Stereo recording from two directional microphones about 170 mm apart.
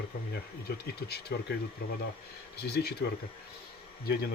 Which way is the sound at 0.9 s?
70° left (ahead or behind).